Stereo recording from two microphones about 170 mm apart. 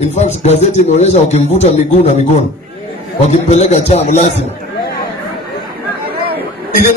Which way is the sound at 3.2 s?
40° left (ahead or behind).